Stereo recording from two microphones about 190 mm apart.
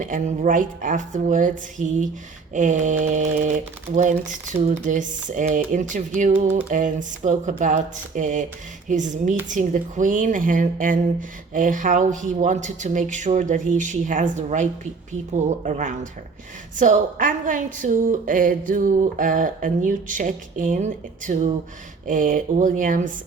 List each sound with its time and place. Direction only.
0.0 s a woman's voice: 45° right (ahead or behind)